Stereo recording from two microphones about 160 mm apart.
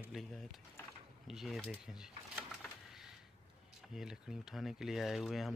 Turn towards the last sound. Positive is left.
turn(degrees=0)  # may be behind; listen again after turning